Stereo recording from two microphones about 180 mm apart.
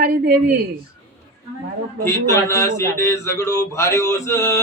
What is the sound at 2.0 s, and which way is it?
Male singing, 15° left (ahead or behind).